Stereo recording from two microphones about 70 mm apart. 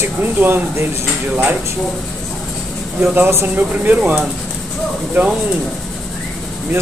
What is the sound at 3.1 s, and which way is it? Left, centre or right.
Speech, right.